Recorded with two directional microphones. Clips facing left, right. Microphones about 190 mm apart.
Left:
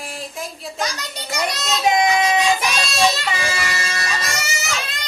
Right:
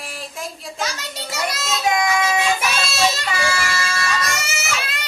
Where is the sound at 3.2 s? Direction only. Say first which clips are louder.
Right 1 dB; 20° left (ahead or behind).